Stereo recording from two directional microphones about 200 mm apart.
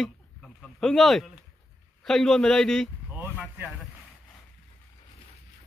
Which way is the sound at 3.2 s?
5° right (ahead or behind).